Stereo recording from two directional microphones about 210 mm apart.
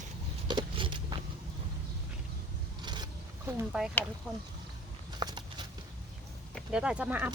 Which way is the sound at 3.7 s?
Centre (ahead or behind).